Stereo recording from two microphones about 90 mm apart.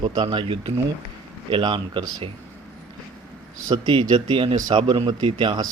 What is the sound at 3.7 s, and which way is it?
Speech, 60° right (ahead or behind).